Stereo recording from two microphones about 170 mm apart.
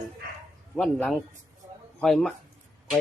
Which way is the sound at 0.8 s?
5° left (ahead or behind).